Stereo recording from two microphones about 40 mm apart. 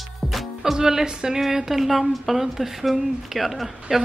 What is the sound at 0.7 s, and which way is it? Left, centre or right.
Speech, centre.